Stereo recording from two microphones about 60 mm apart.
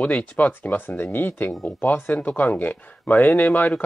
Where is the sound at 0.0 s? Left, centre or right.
Left.